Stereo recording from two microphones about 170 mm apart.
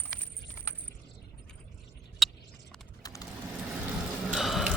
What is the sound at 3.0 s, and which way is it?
Vehicle, 20° left (ahead or behind).